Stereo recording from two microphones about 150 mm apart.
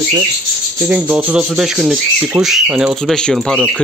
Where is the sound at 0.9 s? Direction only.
10° right (ahead or behind).